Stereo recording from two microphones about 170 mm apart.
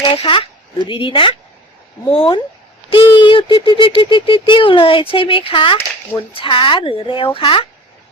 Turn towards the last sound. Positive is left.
turn(degrees=30)  # may be behind; listen again after turning